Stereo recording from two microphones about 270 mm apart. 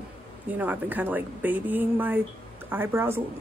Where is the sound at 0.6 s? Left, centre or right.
Centre.